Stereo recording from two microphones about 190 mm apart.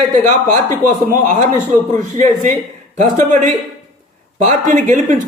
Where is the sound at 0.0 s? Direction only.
40° right (ahead or behind).